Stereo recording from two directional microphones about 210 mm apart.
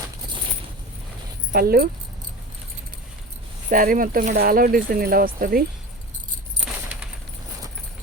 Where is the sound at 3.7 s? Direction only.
40° right (ahead or behind).